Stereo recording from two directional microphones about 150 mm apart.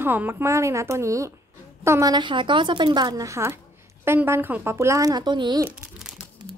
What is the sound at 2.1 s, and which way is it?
Speech, 30° right (ahead or behind).